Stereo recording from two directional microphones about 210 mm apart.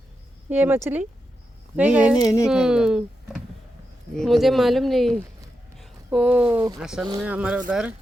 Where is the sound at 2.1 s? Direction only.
15° left (ahead or behind).